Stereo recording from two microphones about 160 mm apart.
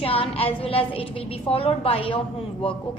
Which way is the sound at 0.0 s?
35° left (ahead or behind).